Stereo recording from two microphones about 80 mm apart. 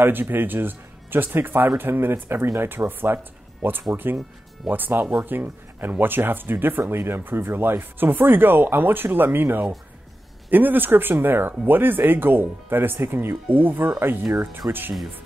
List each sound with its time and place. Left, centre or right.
0.0 s speech: right